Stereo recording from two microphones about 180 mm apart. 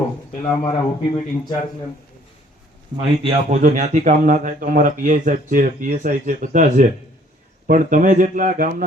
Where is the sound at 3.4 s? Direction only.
45° right (ahead or behind).